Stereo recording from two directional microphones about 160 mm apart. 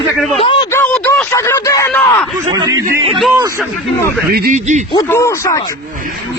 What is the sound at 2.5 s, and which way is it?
Speech, 20° right (ahead or behind).